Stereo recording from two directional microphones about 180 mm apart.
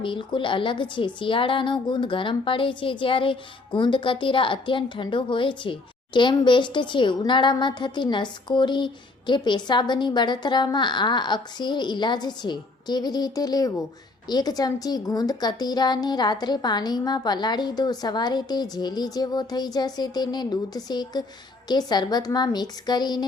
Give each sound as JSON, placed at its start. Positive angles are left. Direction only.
{"t": 0.0, "sound": "a woman's voice", "side_deg": 25}